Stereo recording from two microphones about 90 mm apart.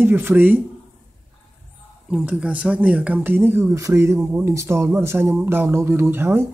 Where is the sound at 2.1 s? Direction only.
15° right (ahead or behind).